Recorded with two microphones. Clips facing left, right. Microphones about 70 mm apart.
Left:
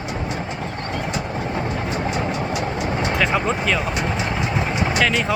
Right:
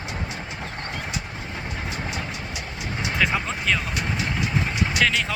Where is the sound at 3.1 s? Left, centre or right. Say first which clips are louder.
Left 2 dB; centre.